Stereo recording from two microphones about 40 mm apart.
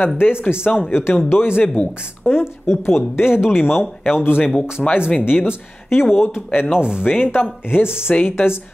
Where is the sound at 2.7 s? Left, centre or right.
Left.